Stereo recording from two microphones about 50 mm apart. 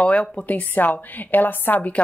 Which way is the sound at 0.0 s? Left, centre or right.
Left.